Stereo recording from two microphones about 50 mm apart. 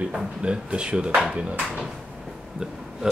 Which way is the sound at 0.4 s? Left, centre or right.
Right.